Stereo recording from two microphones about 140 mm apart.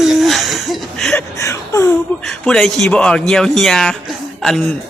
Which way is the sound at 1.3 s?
20° left (ahead or behind).